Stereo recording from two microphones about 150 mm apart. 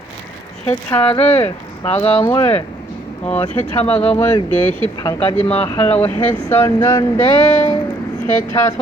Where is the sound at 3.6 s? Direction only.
35° left (ahead or behind).